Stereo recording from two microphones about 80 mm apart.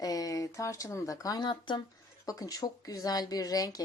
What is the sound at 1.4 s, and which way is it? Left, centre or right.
Speech, left.